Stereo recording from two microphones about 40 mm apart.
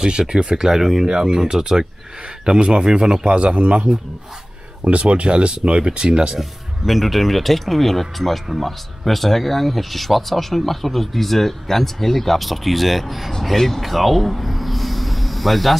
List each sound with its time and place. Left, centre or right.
0.3 s speech: centre
3.3 s a man's voice: right
6.9 s speech: centre